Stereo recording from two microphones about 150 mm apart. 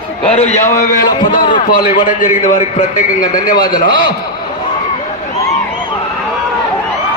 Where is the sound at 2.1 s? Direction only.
60° left (ahead or behind).